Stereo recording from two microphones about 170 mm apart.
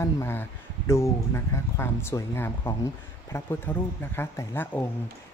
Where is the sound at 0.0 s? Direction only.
15° left (ahead or behind).